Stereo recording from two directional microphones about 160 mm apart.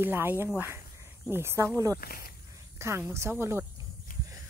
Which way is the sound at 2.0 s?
75° left (ahead or behind).